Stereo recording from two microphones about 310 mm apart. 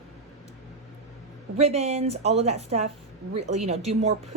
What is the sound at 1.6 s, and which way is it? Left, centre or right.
A woman's voice, centre.